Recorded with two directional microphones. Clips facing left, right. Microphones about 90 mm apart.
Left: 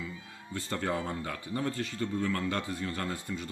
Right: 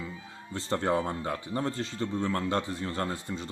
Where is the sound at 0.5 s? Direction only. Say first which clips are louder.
Right 5 dB; 25° right (ahead or behind).